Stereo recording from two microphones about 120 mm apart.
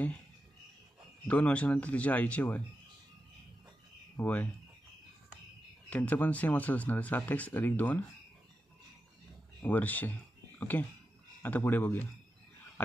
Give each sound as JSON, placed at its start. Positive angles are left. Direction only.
{"t": 1.2, "sound": "speech", "side_deg": 10}
{"t": 4.2, "sound": "speech", "side_deg": 15}
{"t": 5.9, "sound": "speech", "side_deg": 10}
{"t": 9.6, "sound": "speech", "side_deg": 15}